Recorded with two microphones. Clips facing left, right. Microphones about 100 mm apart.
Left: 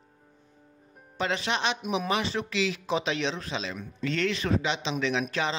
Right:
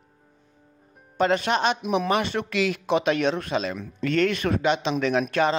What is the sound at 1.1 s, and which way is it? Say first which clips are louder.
Speech: right 7 dB; 50° right (ahead or behind).